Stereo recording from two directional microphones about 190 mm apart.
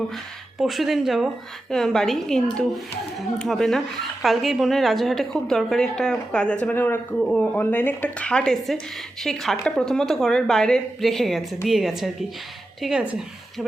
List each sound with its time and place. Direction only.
0.6 s a woman's voice: centre (ahead or behind)